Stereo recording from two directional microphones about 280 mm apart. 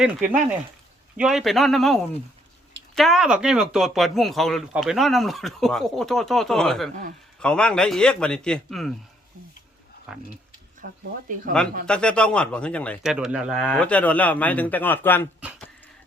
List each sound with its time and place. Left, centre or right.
0.0 s speech: centre
10.1 s speech: centre
10.8 s speech: right
11.9 s speech: centre
15.4 s a sound: centre